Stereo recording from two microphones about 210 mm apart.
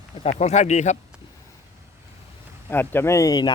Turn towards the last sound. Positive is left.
turn(degrees=20)  # may be behind; listen again after turning